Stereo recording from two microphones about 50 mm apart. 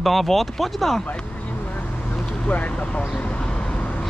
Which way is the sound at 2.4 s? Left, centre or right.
Left.